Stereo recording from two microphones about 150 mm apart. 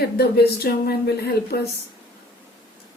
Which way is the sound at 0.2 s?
90° left.